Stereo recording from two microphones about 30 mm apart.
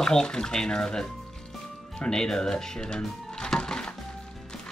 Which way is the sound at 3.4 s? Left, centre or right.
Left.